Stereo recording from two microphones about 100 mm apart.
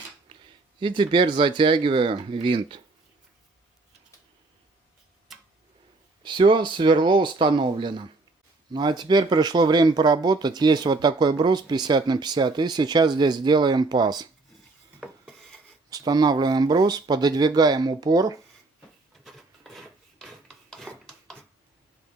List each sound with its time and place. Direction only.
0.3 s a sound: 55° right (ahead or behind)
0.8 s speech: 55° right (ahead or behind)
6.2 s speech: 55° right (ahead or behind)
15.0 s rub: centre (ahead or behind)
15.9 s speech: 40° right (ahead or behind)
19.2 s filing: centre (ahead or behind)